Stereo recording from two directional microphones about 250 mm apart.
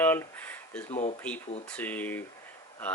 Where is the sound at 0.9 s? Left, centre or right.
Left.